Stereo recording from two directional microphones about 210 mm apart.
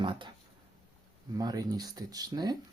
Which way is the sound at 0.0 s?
25° right (ahead or behind).